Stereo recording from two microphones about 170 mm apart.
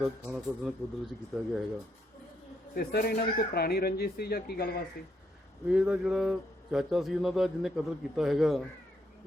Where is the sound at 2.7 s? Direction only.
65° left (ahead or behind).